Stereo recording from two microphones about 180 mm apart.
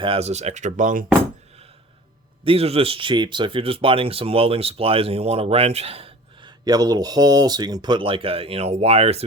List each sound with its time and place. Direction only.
0.0 s speech: 35° right (ahead or behind)
2.4 s speech: 30° right (ahead or behind)